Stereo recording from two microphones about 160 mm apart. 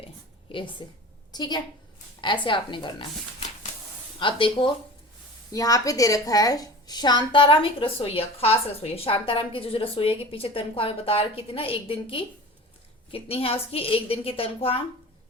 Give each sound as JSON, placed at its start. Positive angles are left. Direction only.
{"t": 0.4, "sound": "a woman's voice", "side_deg": 30}
{"t": 4.2, "sound": "a woman's voice", "side_deg": 30}